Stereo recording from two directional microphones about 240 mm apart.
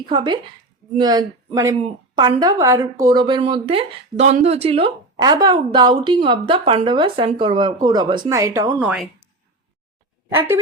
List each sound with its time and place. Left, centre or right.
0.1 s speech: centre
10.2 s speech: centre